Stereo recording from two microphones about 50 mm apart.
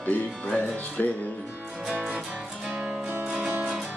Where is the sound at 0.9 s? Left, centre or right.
Left.